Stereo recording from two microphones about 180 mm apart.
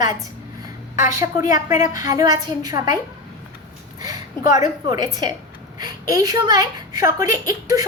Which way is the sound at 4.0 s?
20° right (ahead or behind).